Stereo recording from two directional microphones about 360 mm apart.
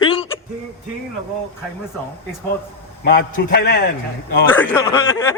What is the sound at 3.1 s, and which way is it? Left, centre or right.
Speech, left.